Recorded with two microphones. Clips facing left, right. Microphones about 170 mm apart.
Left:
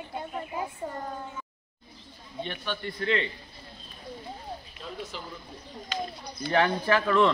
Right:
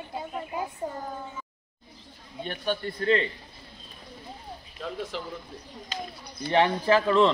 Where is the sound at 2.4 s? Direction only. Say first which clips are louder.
Right 4 dB; 45° right (ahead or behind).